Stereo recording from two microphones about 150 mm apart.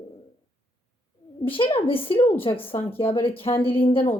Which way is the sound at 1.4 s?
35° left (ahead or behind).